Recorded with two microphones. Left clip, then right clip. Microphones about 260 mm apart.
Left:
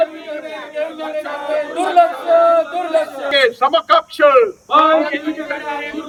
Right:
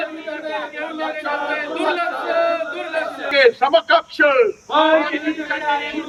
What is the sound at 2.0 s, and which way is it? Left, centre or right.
Speech, left.